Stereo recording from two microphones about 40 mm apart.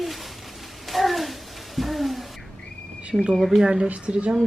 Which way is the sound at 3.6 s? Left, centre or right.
Centre.